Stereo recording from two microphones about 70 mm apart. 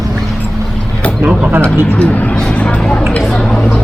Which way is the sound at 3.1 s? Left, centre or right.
Centre.